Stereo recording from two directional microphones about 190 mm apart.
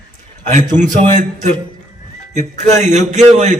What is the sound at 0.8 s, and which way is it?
Speech, 40° right (ahead or behind).